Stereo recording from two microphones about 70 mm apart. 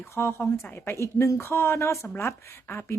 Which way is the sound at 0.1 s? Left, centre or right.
Left.